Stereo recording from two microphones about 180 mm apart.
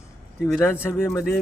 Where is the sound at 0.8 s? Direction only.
15° left (ahead or behind).